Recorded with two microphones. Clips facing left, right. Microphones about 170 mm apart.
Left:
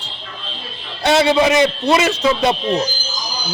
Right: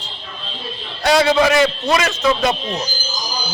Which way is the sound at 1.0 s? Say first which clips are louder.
Even; 25° left (ahead or behind).